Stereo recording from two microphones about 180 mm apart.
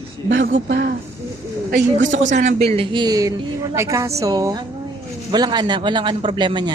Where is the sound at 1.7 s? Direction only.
45° right (ahead or behind).